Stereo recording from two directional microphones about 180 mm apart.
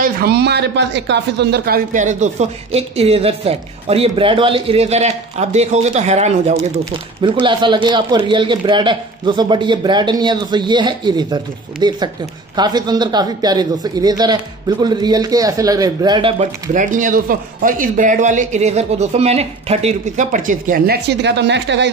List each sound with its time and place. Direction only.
0.0 s speech: 60° right (ahead or behind)
2.0 s speech: 40° right (ahead or behind)
7.2 s a man's voice: 25° right (ahead or behind)
16.7 s speech: 45° right (ahead or behind); by 21.9 s 75° right (ahead or behind)